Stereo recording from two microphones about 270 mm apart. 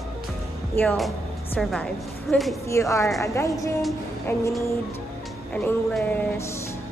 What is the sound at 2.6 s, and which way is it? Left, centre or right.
A woman's voice, centre.